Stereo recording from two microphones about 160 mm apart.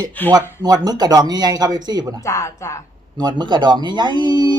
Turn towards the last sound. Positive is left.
turn(degrees=-25)  # may be behind; listen again after turning